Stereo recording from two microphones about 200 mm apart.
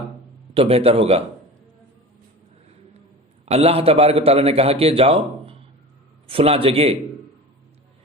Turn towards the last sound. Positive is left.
turn(degrees=-30)  # may be behind; listen again after turning